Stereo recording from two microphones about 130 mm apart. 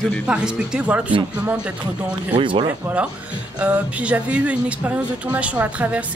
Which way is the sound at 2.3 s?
40° right (ahead or behind).